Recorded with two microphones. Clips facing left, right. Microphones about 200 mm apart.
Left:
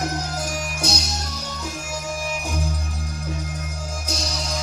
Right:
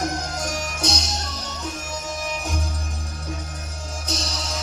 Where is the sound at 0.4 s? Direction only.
10° left (ahead or behind).